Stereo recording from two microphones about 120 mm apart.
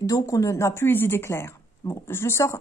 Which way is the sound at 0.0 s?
25° left (ahead or behind).